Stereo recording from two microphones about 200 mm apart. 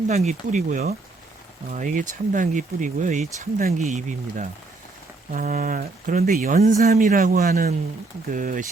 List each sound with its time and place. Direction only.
0.1 s speech: 35° right (ahead or behind)